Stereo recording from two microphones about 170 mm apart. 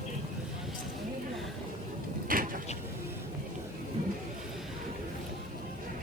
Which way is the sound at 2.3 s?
55° right (ahead or behind).